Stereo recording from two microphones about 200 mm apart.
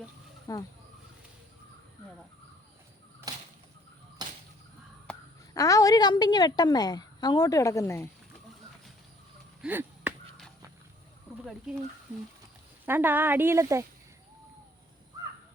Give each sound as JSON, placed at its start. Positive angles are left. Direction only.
{"t": 0.5, "sound": "speech", "side_deg": 15}
{"t": 3.3, "sound": "whip", "side_deg": -20}
{"t": 4.2, "sound": "a sound", "side_deg": -20}
{"t": 5.5, "sound": "a woman's voice", "side_deg": 15}
{"t": 9.6, "sound": "chop", "side_deg": -10}
{"t": 12.8, "sound": "speech", "side_deg": -10}